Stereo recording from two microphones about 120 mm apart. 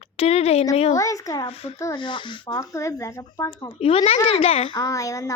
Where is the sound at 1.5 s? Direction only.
55° left (ahead or behind).